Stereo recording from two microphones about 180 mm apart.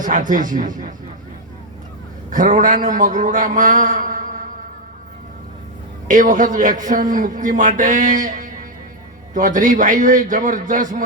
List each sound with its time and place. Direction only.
0.0 s a man's voice: 45° right (ahead or behind)
2.3 s a man's voice: 45° right (ahead or behind)
6.1 s a man's voice: 45° right (ahead or behind)